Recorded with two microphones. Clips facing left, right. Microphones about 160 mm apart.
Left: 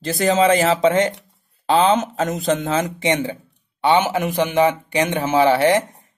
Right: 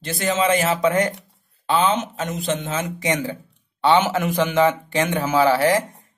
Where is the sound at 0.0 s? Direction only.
35° left (ahead or behind).